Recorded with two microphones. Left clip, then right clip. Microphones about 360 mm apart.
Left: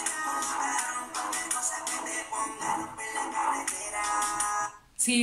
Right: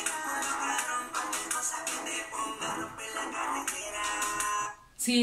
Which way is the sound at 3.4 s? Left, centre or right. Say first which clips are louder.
Left 5 dB; centre.